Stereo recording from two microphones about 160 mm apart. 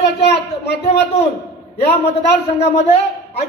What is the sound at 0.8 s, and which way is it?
A man's voice, 40° left (ahead or behind).